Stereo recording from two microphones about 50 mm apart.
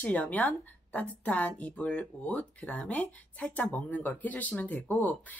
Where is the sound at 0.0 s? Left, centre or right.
Left.